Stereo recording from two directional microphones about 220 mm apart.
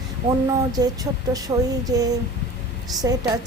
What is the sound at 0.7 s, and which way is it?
Speech, 15° right (ahead or behind).